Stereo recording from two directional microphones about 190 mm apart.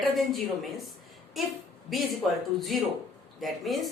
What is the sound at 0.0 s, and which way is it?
Speech, centre (ahead or behind).